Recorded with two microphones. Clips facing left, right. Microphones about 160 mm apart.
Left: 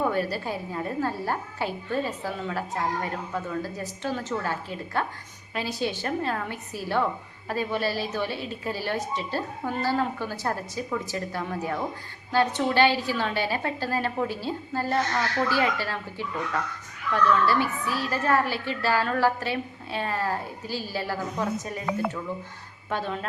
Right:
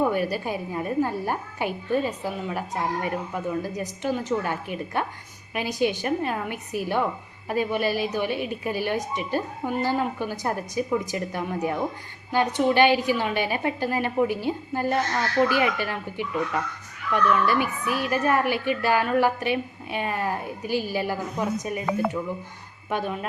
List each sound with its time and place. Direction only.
0.1 s a woman's voice: 15° right (ahead or behind)
17.3 s a woman's voice: 15° right (ahead or behind)
22.9 s a woman's voice: 15° right (ahead or behind)